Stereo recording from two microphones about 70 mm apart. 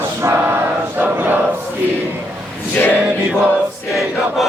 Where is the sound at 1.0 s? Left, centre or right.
Right.